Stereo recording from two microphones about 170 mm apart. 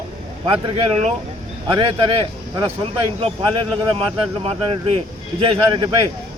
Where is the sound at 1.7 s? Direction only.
30° right (ahead or behind).